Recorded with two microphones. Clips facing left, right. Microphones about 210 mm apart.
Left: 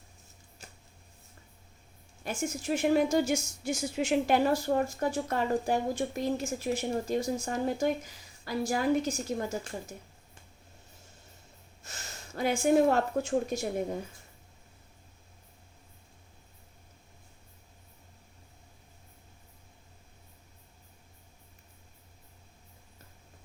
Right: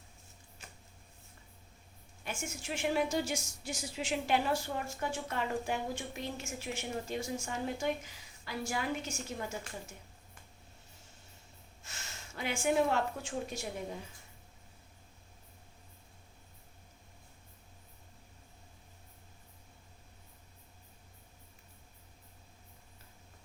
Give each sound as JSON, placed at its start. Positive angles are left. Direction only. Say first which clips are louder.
{"t": 2.2, "sound": "a woman's voice", "louder": "left 8 dB", "side_deg": 40}
{"t": 11.9, "sound": "a sound", "louder": "left 4 dB", "side_deg": 40}
{"t": 12.6, "sound": "a woman's voice", "louder": "left 6 dB", "side_deg": 40}